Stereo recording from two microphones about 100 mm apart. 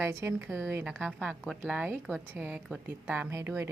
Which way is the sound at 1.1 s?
10° right (ahead or behind).